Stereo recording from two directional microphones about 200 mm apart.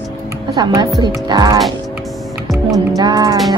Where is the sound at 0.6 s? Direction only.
20° right (ahead or behind).